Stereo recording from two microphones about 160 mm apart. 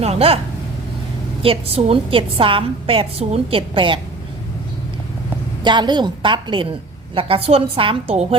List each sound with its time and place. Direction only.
0.0 s speech: 40° right (ahead or behind)
1.4 s a woman's voice: 35° right (ahead or behind)
5.6 s a woman's voice: 30° right (ahead or behind)